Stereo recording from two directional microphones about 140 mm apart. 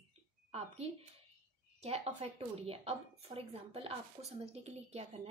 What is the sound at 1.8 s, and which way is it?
A woman's voice, 45° right (ahead or behind).